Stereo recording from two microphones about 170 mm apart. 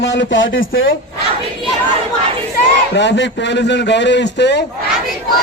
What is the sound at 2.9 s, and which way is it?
A man's voice, 90° left.